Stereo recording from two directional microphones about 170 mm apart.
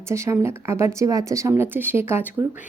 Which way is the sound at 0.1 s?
15° right (ahead or behind).